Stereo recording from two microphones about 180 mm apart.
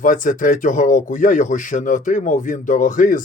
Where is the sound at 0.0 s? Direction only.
45° left (ahead or behind).